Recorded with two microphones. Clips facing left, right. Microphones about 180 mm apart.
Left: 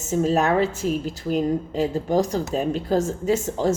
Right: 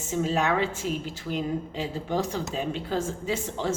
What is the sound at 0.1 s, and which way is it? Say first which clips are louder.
A woman's voice: left 5 dB; 40° left (ahead or behind).